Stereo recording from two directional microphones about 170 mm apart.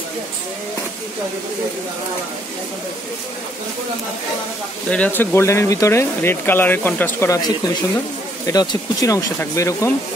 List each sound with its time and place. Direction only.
4.8 s speech: 10° left (ahead or behind)